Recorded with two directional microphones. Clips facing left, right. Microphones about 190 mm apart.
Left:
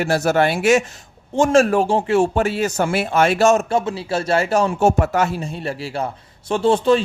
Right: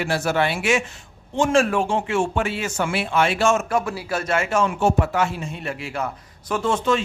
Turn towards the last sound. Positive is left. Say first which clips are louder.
# left 6 dB
turn(degrees=35)  # may be behind; listen again after turning